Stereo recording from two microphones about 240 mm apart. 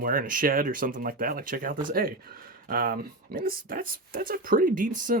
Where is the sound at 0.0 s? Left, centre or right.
Right.